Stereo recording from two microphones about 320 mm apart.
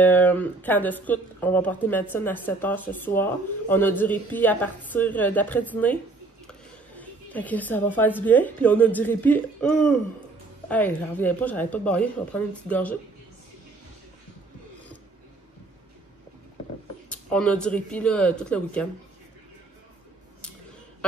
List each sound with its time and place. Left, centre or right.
0.0 s speech: centre
7.0 s a woman's voice: centre
17.1 s speech: centre